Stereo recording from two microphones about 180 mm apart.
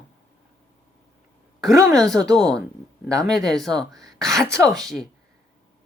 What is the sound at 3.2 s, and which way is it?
Speech, centre (ahead or behind).